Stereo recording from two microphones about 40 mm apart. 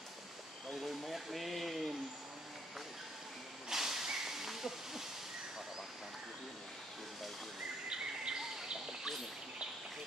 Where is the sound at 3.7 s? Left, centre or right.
Centre.